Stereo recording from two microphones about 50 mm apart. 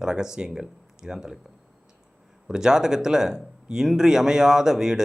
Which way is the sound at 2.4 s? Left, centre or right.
Centre.